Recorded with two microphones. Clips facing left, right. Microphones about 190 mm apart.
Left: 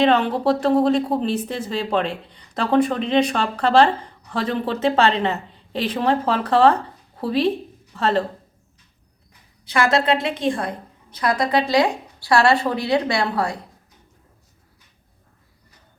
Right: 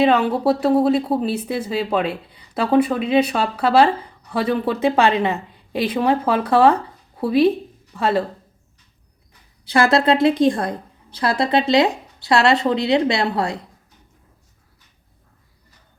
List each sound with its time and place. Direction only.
0.0 s a woman's voice: 10° right (ahead or behind)
9.6 s a woman's voice: 35° right (ahead or behind)